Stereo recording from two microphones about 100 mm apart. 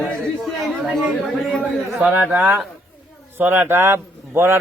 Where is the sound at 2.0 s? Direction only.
15° right (ahead or behind).